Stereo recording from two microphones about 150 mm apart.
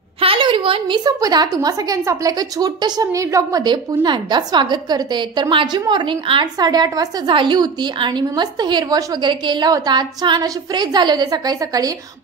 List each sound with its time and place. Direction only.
0.2 s a woman's voice: 35° right (ahead or behind); by 3.6 s 20° right (ahead or behind)
3.6 s a woman's voice: 30° right (ahead or behind)